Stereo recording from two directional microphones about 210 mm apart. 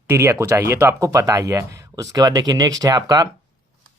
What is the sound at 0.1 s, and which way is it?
Speech, 15° right (ahead or behind).